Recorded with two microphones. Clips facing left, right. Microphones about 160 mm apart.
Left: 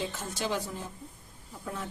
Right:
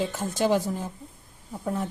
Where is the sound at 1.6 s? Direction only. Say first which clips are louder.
Right 9 dB; 45° right (ahead or behind).